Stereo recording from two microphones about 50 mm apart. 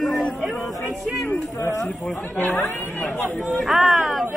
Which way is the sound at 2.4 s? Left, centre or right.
Left.